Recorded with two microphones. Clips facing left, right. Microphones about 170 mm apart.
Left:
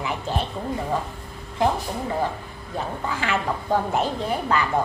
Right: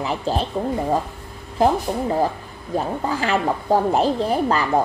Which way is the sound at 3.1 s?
35° right (ahead or behind).